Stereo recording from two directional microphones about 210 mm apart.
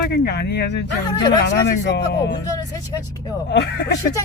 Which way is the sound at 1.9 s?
55° left (ahead or behind).